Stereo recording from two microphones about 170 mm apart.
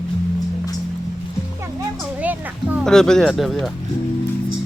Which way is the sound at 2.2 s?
10° right (ahead or behind).